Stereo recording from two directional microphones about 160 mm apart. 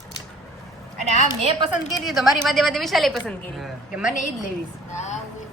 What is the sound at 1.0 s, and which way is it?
Speech, 45° right (ahead or behind).